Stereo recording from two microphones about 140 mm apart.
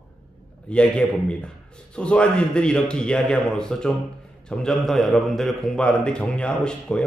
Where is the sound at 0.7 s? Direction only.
10° left (ahead or behind).